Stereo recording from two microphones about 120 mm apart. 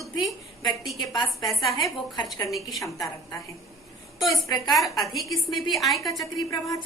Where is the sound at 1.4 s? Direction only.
Centre (ahead or behind).